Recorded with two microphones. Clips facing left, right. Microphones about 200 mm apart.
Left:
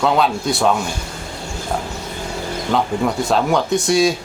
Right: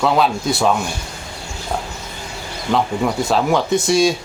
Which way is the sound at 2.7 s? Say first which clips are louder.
Right 1 dB; centre (ahead or behind).